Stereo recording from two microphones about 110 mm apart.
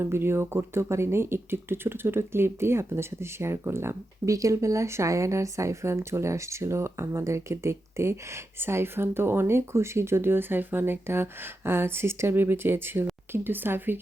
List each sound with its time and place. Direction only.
0.0 s speech: 20° right (ahead or behind)